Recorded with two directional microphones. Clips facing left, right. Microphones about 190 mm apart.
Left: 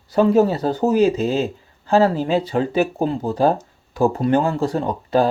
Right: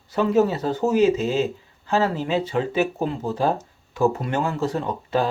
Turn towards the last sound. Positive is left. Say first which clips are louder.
# left 5 dB
turn(degrees=35)  # may be behind; listen again after turning